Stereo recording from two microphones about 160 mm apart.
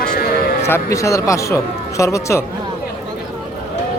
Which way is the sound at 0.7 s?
20° left (ahead or behind).